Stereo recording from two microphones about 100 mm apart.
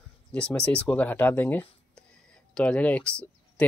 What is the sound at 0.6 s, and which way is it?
Speech, 15° left (ahead or behind).